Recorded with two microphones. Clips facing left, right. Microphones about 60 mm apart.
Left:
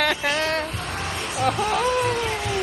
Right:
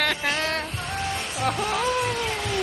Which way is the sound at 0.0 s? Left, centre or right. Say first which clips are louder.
Left 3 dB; centre.